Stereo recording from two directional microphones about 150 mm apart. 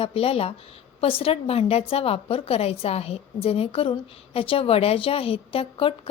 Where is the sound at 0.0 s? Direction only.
40° left (ahead or behind).